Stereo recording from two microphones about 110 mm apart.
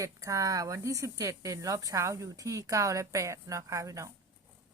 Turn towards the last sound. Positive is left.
turn(degrees=-30)  # may be behind; listen again after turning